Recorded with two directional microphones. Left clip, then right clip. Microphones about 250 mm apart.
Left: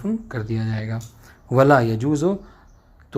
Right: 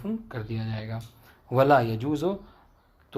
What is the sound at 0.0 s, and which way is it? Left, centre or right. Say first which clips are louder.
Speech: left 7 dB; left.